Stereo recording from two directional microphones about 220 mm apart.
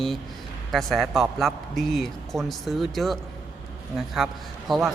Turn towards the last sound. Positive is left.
turn(degrees=0)  # may be behind; listen again after turning